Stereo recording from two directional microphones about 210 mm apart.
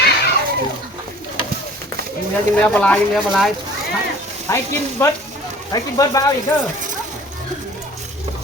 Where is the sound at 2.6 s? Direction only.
5° left (ahead or behind).